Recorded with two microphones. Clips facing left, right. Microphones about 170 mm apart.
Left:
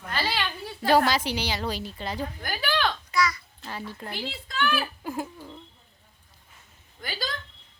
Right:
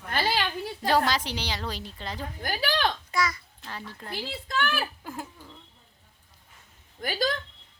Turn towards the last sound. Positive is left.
turn(degrees=-45)  # may be behind; listen again after turning